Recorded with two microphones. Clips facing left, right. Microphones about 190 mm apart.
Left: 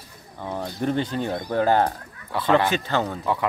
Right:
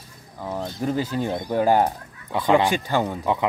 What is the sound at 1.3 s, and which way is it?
Speech, 15° right (ahead or behind).